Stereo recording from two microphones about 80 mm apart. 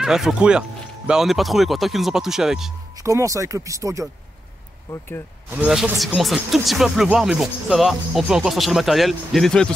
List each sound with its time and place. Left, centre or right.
0.0 s speech: centre
3.0 s speech: right
4.9 s speech: left
5.6 s speech: centre
5.9 s speech: centre